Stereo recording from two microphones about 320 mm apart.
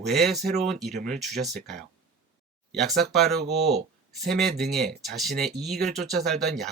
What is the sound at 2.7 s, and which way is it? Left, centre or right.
Speech, centre.